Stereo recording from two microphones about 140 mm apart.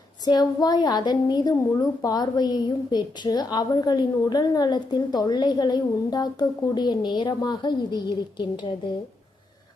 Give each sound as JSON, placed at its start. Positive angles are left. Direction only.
{"t": 0.3, "sound": "a woman's voice", "side_deg": 30}